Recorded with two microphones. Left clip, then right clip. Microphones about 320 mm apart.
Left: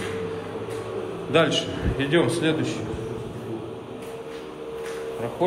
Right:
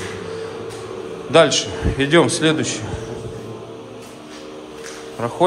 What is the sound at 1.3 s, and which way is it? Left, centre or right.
A man's voice, centre.